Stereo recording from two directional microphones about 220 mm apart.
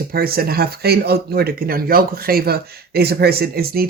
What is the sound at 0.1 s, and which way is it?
Speech, 45° right (ahead or behind).